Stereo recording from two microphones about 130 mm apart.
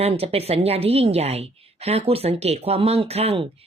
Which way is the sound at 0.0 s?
50° right (ahead or behind).